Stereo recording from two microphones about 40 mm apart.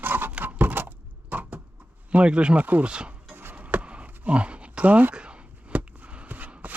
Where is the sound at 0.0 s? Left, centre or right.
Right.